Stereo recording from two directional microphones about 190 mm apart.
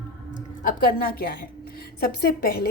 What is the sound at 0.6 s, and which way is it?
A woman's voice, 45° left (ahead or behind).